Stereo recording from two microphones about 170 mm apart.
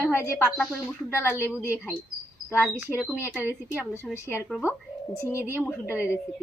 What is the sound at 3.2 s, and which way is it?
Speech, 10° right (ahead or behind).